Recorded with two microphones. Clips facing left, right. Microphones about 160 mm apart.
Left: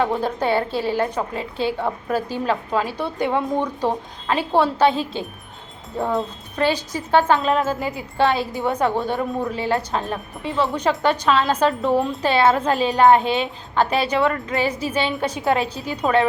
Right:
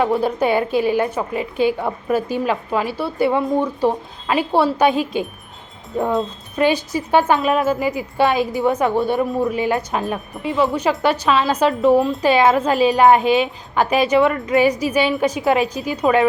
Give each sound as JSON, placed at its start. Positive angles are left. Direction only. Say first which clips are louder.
{"t": 0.0, "sound": "speech", "louder": "right 3 dB", "side_deg": -10}
{"t": 6.6, "sound": "speech", "louder": "right 4 dB", "side_deg": -15}